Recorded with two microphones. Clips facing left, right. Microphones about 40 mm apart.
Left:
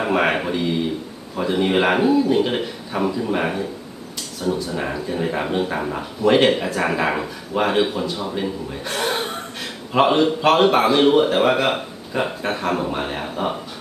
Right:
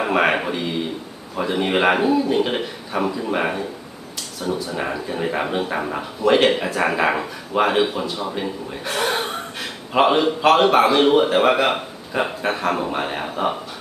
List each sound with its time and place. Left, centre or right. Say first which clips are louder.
0.0 s speech: right 1 dB; centre